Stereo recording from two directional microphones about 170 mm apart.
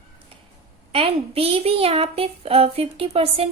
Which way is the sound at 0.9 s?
35° right (ahead or behind).